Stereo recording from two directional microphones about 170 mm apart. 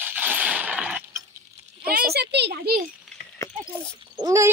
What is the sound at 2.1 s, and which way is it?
Speech, 80° right.